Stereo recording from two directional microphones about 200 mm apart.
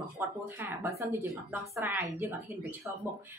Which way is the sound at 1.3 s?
Centre (ahead or behind).